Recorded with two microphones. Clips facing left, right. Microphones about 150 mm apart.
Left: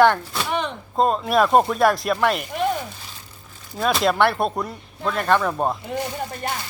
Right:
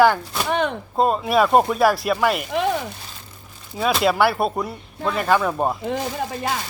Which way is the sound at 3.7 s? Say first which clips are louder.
Right 1 dB; 5° right (ahead or behind).